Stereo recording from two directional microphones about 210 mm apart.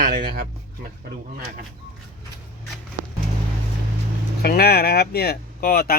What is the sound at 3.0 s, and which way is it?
Music, 35° right (ahead or behind).